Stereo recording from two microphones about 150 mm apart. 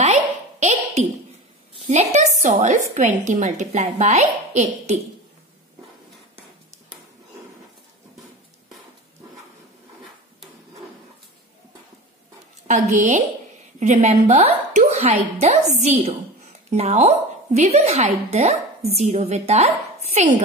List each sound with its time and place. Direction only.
0.0 s a sound: 50° right (ahead or behind)
1.9 s a woman's voice: 50° right (ahead or behind)
12.6 s a woman's voice: 55° right (ahead or behind)